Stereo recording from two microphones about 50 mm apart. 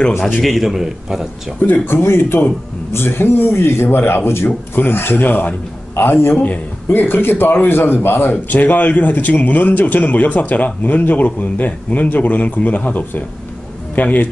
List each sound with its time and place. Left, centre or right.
0.4 s a man's voice: centre
1.6 s a man's voice: left
5.9 s a man's voice: left